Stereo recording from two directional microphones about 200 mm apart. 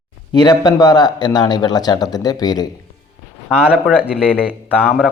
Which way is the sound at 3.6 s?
5° right (ahead or behind).